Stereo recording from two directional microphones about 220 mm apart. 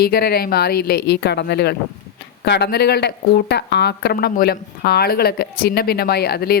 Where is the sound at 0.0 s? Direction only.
45° left (ahead or behind).